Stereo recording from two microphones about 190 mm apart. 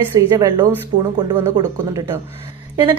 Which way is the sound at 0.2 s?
20° right (ahead or behind).